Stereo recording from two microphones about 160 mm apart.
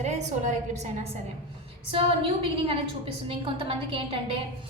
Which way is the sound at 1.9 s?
35° right (ahead or behind).